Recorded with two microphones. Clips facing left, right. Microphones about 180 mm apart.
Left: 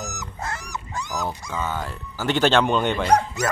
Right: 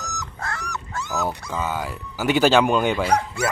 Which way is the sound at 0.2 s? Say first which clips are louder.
Even; 20° left (ahead or behind).